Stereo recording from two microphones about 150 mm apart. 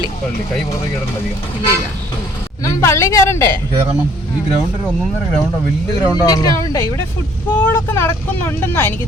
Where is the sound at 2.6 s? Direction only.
20° left (ahead or behind).